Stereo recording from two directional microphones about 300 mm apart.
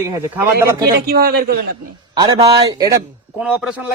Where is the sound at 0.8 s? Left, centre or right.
Right.